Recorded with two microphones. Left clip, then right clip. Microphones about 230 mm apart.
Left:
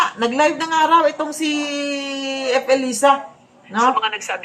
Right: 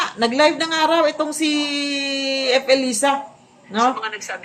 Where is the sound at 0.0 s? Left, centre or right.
Left.